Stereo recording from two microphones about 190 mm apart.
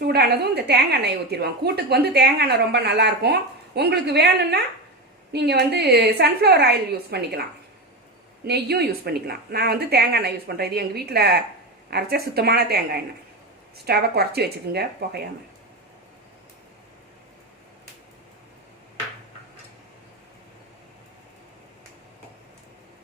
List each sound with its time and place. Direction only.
0.0 s a woman's voice: 55° right (ahead or behind)
8.4 s a woman's voice: 60° right (ahead or behind)